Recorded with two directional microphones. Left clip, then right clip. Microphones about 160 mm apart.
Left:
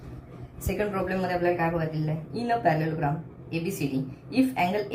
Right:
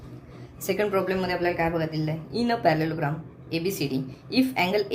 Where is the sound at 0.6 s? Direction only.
50° right (ahead or behind).